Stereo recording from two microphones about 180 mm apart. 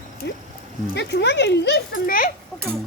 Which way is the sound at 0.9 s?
70° left (ahead or behind).